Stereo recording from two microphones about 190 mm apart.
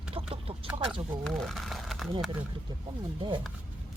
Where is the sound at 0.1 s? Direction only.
30° right (ahead or behind).